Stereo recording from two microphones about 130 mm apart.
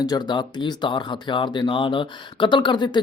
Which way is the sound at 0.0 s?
30° left (ahead or behind).